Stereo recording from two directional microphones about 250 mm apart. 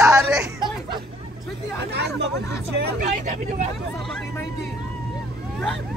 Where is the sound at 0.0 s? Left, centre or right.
Centre.